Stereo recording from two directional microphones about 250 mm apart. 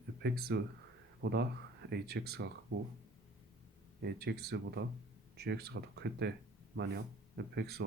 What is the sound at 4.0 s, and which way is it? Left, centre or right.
Speech, right.